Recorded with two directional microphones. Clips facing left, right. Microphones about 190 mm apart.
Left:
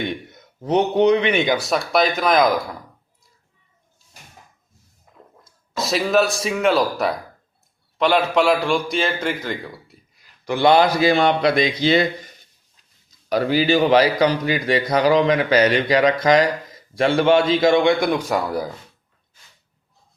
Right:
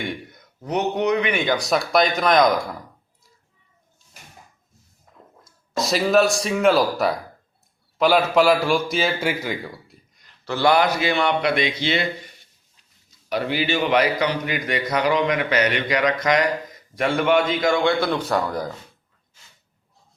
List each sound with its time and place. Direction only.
0.0 s a man's voice: 25° left (ahead or behind)
1.5 s a man's voice: centre (ahead or behind)
5.1 s a sound: 5° left (ahead or behind)
5.7 s a man's voice: centre (ahead or behind)
10.2 s a sound: 10° left (ahead or behind)
11.0 s a man's voice: 35° left (ahead or behind)
13.3 s a man's voice: 40° left (ahead or behind); by 18.7 s 10° left (ahead or behind)